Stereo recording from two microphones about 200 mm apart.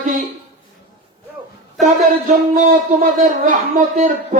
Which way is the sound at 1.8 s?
40° right (ahead or behind).